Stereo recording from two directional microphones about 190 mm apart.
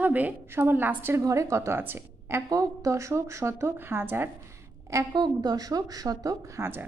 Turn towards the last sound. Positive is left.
turn(degrees=-15)  # may be behind; listen again after turning